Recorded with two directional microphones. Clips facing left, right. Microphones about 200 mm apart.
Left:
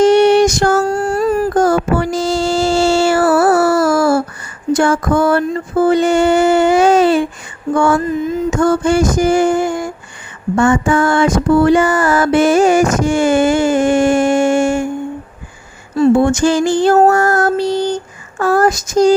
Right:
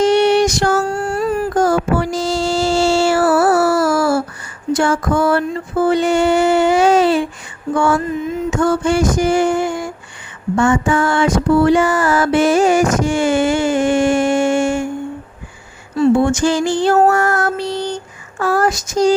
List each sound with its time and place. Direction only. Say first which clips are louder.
0.0 s music: left 4 dB; 45° left (ahead or behind)
4.7 s a sound: left 3 dB; 50° left (ahead or behind)
16.0 s music: left 2 dB; 50° left (ahead or behind)